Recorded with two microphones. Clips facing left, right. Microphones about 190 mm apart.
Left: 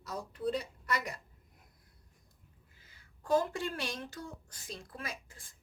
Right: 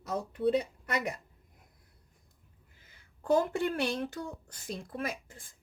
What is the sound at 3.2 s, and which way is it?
Speech, 60° right (ahead or behind).